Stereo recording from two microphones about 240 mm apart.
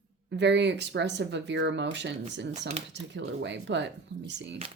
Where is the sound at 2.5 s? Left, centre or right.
Right.